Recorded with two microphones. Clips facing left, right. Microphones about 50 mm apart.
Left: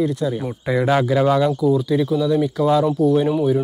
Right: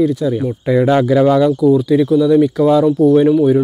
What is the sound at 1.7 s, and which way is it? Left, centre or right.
Speech, centre.